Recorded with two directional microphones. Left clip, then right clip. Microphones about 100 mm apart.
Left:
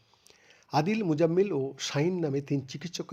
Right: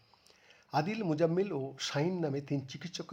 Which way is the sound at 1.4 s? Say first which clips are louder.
Left 7 dB; 25° left (ahead or behind).